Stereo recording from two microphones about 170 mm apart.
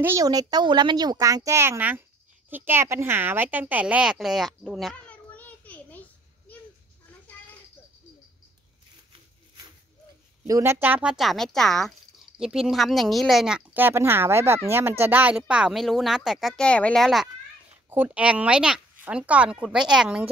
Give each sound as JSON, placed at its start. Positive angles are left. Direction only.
{"t": 0.0, "sound": "speech", "side_deg": -20}
{"t": 10.4, "sound": "speech", "side_deg": -15}
{"t": 17.8, "sound": "speech", "side_deg": -10}